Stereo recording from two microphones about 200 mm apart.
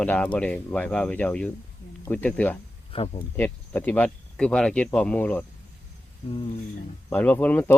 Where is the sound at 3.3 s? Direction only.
10° left (ahead or behind).